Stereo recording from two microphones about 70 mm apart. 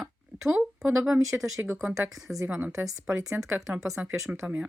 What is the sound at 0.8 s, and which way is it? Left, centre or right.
Speech, centre.